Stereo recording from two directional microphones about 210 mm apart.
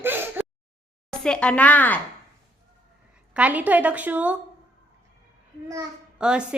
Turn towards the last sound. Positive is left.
turn(degrees=-5)  # may be behind; listen again after turning